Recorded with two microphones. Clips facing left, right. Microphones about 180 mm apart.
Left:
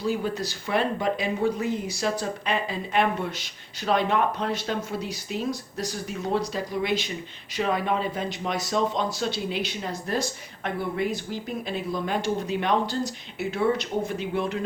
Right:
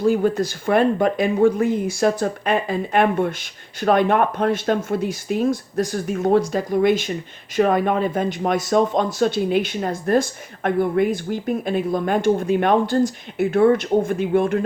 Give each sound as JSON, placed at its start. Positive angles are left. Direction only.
{"t": 0.0, "sound": "speech", "side_deg": -50}